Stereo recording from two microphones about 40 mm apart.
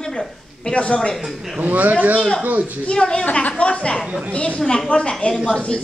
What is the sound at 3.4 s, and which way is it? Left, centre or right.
A woman's voice, left.